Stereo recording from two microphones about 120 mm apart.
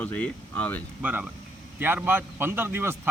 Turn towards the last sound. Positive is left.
turn(degrees=-20)  # may be behind; listen again after turning